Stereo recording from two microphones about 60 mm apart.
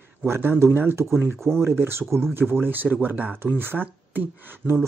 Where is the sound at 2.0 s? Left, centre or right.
Centre.